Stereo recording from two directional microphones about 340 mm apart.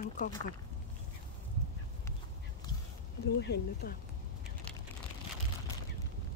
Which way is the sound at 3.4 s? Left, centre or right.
Left.